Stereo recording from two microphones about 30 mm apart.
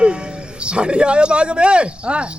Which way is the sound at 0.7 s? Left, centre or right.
Right.